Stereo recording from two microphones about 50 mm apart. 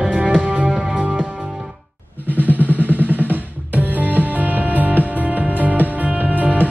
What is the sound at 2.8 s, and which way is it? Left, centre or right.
Music, right.